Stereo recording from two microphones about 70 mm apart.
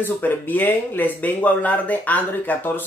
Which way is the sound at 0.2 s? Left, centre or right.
Left.